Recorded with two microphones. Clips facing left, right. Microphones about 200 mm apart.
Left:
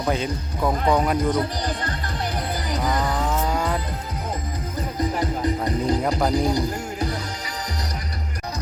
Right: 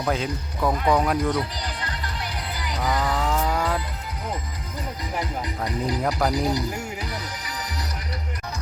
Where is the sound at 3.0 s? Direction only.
Centre (ahead or behind).